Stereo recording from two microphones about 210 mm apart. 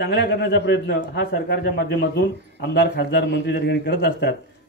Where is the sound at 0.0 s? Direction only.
55° left (ahead or behind).